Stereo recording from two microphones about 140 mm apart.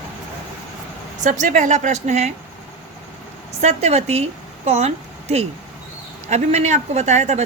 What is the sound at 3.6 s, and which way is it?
A woman's voice, 50° right (ahead or behind).